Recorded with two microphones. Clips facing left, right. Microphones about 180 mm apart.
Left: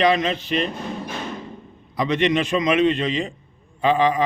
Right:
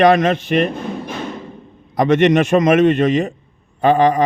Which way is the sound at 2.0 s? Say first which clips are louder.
Right 7 dB; 45° right (ahead or behind).